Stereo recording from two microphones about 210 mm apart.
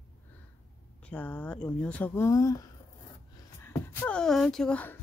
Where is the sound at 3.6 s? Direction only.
10° left (ahead or behind).